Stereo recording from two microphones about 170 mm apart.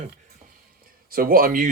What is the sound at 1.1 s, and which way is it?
Speech, 60° right (ahead or behind).